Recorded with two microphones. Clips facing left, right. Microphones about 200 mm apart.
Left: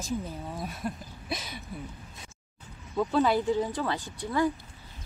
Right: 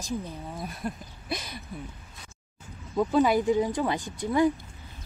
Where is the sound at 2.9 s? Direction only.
10° right (ahead or behind).